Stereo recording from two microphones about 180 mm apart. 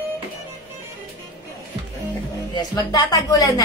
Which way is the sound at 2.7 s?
20° left (ahead or behind).